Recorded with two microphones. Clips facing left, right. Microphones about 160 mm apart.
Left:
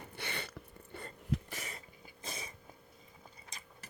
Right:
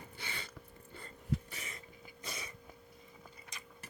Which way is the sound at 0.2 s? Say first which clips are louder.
Left 5 dB; 65° left (ahead or behind).